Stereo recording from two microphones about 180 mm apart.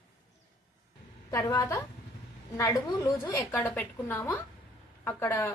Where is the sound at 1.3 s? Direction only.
20° left (ahead or behind).